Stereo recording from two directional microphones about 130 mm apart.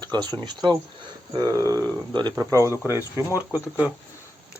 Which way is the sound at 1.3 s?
30° right (ahead or behind).